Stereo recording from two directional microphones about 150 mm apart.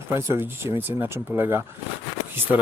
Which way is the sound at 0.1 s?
20° right (ahead or behind).